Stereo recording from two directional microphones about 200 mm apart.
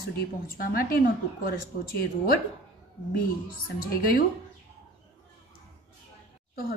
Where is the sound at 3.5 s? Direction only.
45° left (ahead or behind).